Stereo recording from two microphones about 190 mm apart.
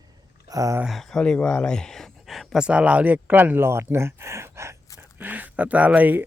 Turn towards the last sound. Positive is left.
turn(degrees=-10)  # may be behind; listen again after turning